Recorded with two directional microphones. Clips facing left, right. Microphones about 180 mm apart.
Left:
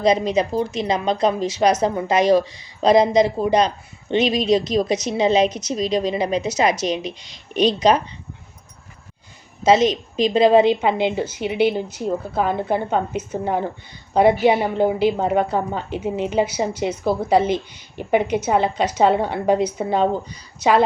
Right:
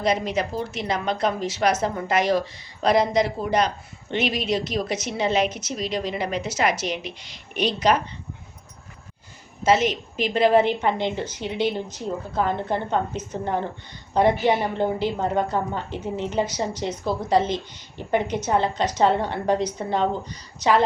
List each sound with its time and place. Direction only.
0.0 s a woman's voice: 15° left (ahead or behind)
9.6 s a woman's voice: 20° left (ahead or behind)